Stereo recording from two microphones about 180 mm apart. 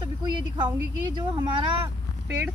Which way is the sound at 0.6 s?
25° right (ahead or behind).